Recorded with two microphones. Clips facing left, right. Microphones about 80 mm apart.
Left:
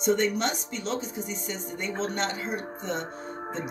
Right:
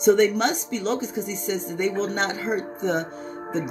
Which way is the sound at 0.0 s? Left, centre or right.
Right.